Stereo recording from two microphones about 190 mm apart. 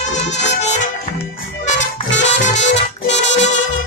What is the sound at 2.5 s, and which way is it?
Music, 70° left (ahead or behind).